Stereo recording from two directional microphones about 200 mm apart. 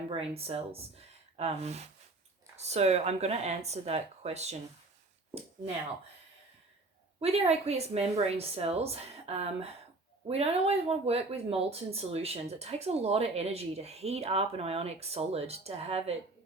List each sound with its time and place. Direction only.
0.1 s speech: 30° right (ahead or behind)
7.2 s speech: 30° right (ahead or behind)